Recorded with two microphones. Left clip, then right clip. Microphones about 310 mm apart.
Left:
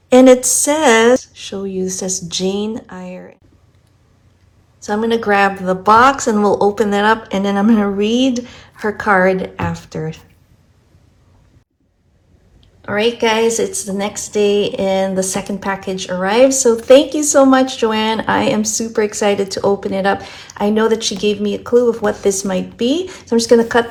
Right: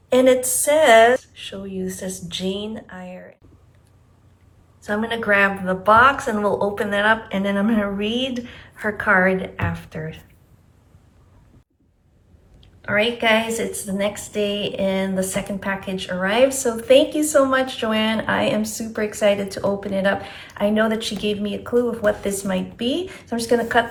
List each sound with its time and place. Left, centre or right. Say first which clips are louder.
0.1 s a woman's voice: left 7 dB; centre
4.8 s a woman's voice: left 7 dB; centre
12.8 s a woman's voice: left 4 dB; centre